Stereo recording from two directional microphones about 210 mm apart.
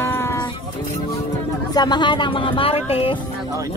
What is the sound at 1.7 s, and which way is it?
Speech, 20° left (ahead or behind).